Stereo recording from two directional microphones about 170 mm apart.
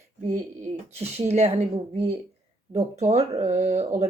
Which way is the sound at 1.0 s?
40° right (ahead or behind).